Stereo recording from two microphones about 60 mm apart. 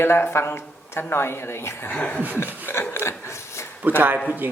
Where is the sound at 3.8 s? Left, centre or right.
Right.